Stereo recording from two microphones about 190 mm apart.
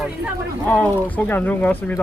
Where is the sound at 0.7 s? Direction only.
10° left (ahead or behind).